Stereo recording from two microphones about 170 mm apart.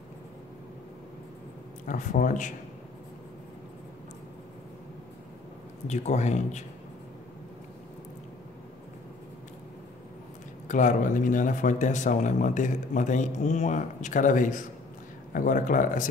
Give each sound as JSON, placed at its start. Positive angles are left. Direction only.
{"t": 1.9, "sound": "speech", "side_deg": 50}
{"t": 5.9, "sound": "speech", "side_deg": 40}
{"t": 10.7, "sound": "speech", "side_deg": 45}